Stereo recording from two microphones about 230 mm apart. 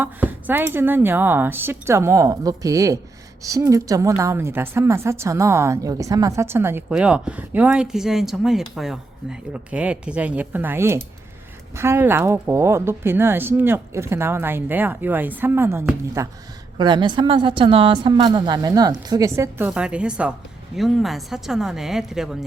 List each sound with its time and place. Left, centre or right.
0.0 s a woman's voice: centre